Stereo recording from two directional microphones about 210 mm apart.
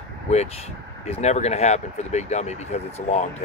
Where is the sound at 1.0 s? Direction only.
30° left (ahead or behind).